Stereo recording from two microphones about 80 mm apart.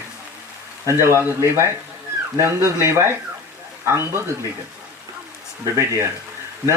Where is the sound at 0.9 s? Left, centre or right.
Right.